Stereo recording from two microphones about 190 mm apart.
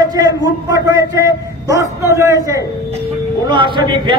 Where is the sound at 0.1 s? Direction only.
20° right (ahead or behind).